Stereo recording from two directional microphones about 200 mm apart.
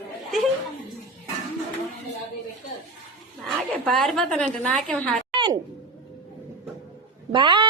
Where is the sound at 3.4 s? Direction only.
Centre (ahead or behind).